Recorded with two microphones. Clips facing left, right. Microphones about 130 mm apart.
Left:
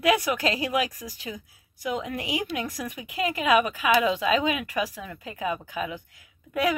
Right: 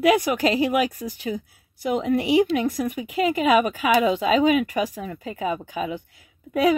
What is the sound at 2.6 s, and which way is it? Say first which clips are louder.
Speech: right 9 dB; 25° right (ahead or behind).